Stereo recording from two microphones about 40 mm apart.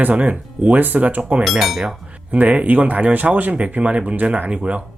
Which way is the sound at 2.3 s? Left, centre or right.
Right.